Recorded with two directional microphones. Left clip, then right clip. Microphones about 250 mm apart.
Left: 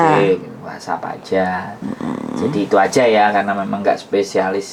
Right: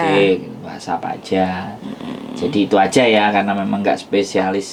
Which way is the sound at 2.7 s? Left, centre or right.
Centre.